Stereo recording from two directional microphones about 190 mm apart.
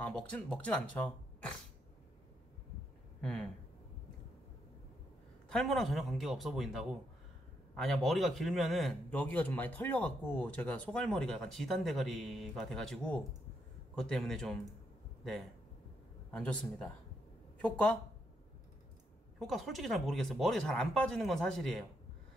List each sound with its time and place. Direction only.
0.0 s speech: 5° left (ahead or behind)
3.2 s a sound: 5° left (ahead or behind)
5.5 s a man's voice: centre (ahead or behind)
16.3 s a man's voice: 5° left (ahead or behind)
19.4 s a man's voice: centre (ahead or behind)